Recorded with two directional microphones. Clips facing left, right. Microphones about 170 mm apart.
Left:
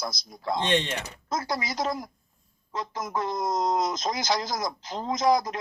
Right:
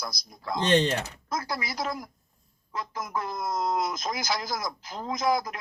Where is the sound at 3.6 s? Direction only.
40° left (ahead or behind).